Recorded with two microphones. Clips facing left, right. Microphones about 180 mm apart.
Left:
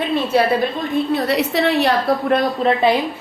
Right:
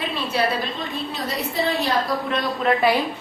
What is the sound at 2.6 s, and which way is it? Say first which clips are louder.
Speech: right 1 dB; 30° left (ahead or behind).